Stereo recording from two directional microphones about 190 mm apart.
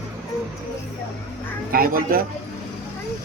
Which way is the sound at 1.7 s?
50° right (ahead or behind).